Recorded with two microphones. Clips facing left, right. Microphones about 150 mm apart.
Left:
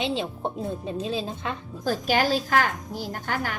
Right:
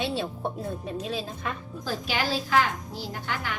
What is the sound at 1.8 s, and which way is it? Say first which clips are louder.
A woman's voice: left 6 dB; 45° left (ahead or behind).